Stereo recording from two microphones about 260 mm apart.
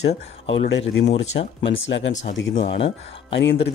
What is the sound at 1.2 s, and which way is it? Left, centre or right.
Speech, left.